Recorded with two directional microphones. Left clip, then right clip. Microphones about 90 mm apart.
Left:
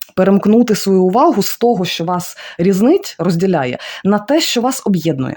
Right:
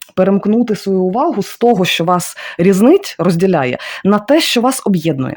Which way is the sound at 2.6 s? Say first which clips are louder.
Right 3 dB; 35° right (ahead or behind).